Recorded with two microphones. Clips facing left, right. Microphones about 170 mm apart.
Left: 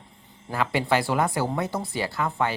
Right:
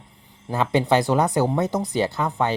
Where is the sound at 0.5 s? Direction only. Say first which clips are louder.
Right 4 dB; 20° right (ahead or behind).